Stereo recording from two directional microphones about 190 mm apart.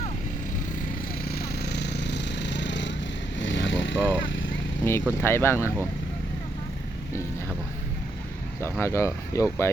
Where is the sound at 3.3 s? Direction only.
75° left (ahead or behind).